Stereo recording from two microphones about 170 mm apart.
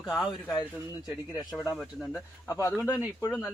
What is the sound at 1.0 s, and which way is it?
Speech, 20° left (ahead or behind).